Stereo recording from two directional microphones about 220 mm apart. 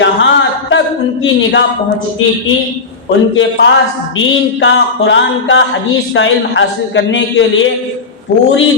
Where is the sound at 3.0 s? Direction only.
55° left (ahead or behind).